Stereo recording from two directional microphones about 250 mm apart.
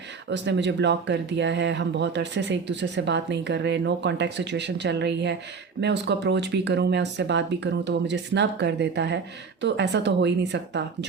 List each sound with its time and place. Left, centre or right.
0.3 s speech: right